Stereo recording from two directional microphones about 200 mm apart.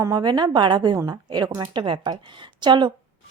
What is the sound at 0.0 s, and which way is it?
A woman's voice, 20° right (ahead or behind).